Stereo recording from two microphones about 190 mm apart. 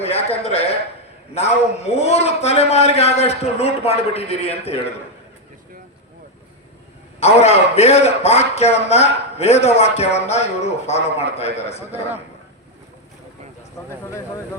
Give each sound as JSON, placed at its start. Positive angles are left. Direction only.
{"t": 0.0, "sound": "a man's voice", "side_deg": 30}
{"t": 7.2, "sound": "a man's voice", "side_deg": 35}